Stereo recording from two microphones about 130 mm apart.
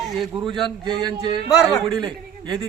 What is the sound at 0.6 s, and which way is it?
Speech, 35° right (ahead or behind).